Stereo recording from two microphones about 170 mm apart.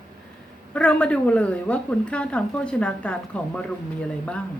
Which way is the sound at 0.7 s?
5° left (ahead or behind).